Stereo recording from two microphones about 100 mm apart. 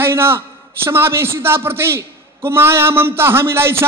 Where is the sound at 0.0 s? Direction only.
25° right (ahead or behind).